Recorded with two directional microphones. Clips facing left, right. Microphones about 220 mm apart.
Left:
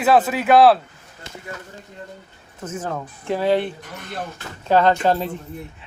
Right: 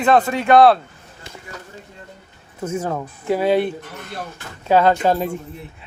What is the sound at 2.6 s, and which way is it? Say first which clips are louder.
Speech: right 4 dB; 10° right (ahead or behind).